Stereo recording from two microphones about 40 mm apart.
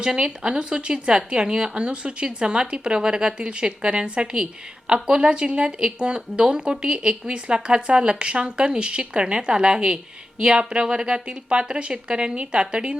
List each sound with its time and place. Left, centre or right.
0.0 s speech: right